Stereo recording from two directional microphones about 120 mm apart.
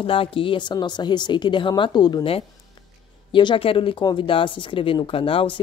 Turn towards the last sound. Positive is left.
turn(degrees=45)  # may be behind; listen again after turning